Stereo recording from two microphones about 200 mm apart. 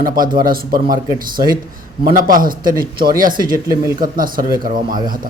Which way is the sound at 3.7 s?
15° right (ahead or behind).